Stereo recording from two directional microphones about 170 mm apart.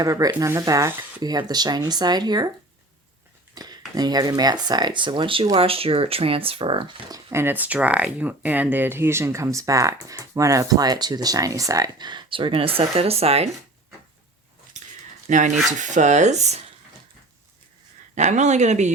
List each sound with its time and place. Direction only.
0.0 s speech: 20° right (ahead or behind)
3.5 s speech: 25° right (ahead or behind)
14.8 s a sound: 45° right (ahead or behind)
15.3 s dishes: 45° right (ahead or behind)
18.1 s dishes: 45° right (ahead or behind)